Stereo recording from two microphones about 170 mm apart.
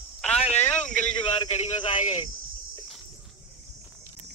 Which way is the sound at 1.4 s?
30° left (ahead or behind).